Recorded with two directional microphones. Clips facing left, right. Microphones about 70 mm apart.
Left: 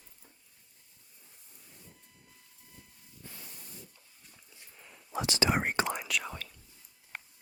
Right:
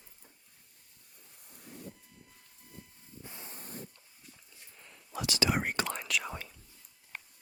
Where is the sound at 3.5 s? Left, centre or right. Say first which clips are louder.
Right 6 dB; right.